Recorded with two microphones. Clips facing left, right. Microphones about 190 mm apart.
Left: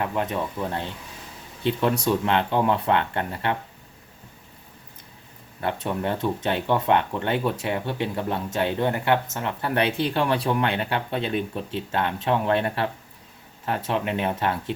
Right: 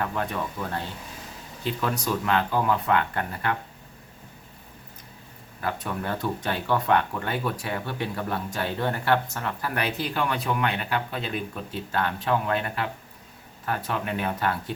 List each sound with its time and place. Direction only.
0.0 s speech: 20° left (ahead or behind)
5.5 s speech: 25° left (ahead or behind)